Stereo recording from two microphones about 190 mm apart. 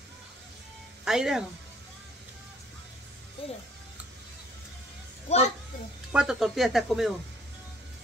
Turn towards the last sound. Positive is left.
turn(degrees=0)  # may be behind; listen again after turning